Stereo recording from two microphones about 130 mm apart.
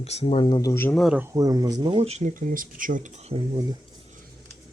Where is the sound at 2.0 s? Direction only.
65° right (ahead or behind).